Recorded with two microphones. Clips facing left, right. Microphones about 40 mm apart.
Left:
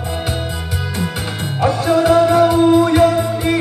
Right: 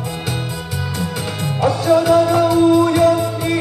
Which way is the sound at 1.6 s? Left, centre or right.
Left.